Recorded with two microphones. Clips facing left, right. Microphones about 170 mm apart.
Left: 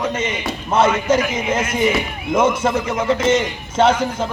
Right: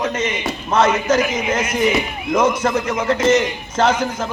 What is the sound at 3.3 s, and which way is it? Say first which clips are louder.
Speech: even; 30° left (ahead or behind).